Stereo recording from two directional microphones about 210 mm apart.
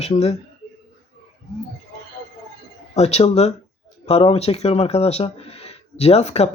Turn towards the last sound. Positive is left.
turn(degrees=30)  # may be behind; listen again after turning